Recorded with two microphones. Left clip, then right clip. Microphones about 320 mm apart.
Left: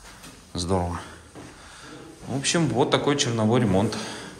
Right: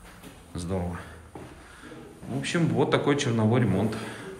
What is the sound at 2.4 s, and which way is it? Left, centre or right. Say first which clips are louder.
A man's voice: left 3 dB; centre.